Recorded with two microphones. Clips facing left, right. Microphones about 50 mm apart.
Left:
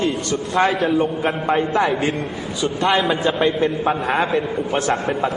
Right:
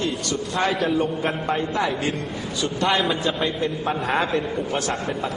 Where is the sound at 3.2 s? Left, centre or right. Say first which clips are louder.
Left 6 dB; left.